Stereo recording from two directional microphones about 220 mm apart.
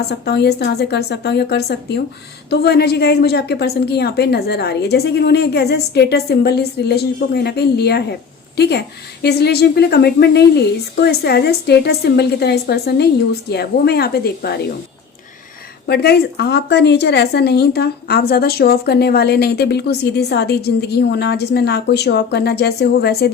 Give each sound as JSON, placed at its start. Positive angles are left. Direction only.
{"t": 0.1, "sound": "a woman's voice", "side_deg": 50}
{"t": 15.9, "sound": "a woman's voice", "side_deg": 45}